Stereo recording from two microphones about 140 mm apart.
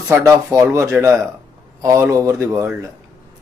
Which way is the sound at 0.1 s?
20° right (ahead or behind).